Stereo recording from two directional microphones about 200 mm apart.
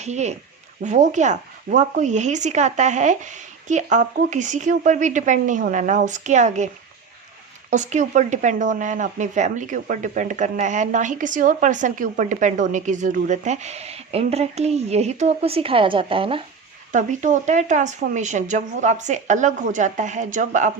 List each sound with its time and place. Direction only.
0.0 s speech: 35° right (ahead or behind)
7.7 s speech: 35° right (ahead or behind)
16.9 s speech: 40° right (ahead or behind)